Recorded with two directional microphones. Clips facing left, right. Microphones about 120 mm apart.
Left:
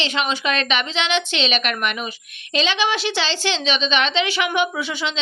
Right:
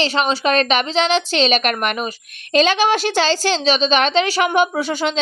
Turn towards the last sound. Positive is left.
turn(degrees=-45)  # may be behind; listen again after turning